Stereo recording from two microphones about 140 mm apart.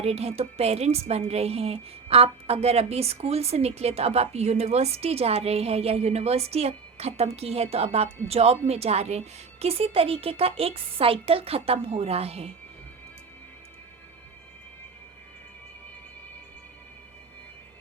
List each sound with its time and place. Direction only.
0.0 s a woman's voice: 45° right (ahead or behind)